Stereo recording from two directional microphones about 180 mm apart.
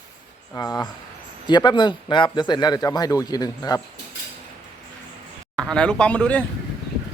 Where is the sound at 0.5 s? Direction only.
20° left (ahead or behind).